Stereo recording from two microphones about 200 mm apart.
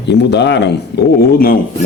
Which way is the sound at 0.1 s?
60° left (ahead or behind).